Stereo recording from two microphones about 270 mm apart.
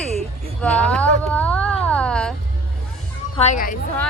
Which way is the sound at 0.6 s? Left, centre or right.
Centre.